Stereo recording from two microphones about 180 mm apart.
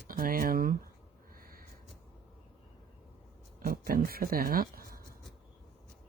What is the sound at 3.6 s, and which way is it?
Speech, 50° right (ahead or behind).